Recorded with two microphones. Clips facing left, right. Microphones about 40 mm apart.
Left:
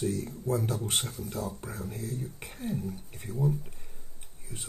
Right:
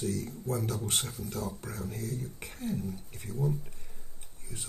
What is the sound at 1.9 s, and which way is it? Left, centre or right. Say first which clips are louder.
Speech: even; left.